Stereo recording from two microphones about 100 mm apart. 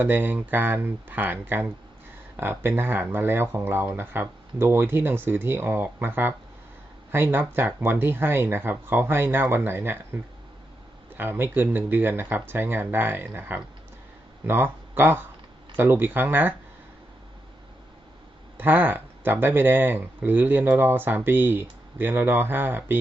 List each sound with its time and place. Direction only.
0.0 s speech: 20° right (ahead or behind)
11.2 s speech: 20° right (ahead or behind)
18.5 s speech: 20° right (ahead or behind)